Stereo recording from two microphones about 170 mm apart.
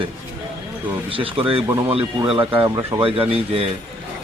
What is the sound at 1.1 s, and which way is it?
A man's voice, 30° right (ahead or behind).